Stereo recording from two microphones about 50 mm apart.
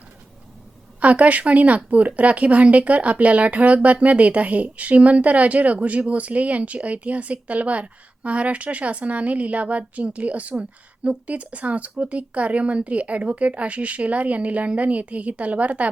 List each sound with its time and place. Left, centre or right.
0.9 s a woman's voice: right